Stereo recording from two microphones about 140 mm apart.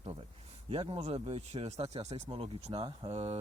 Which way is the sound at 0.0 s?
45° right (ahead or behind).